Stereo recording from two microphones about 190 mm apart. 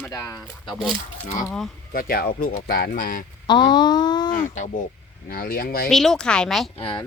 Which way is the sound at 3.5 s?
25° left (ahead or behind).